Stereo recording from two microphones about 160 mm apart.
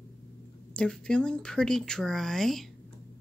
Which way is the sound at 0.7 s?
5° left (ahead or behind).